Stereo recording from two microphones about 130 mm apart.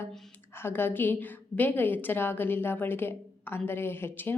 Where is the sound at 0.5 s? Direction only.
15° left (ahead or behind).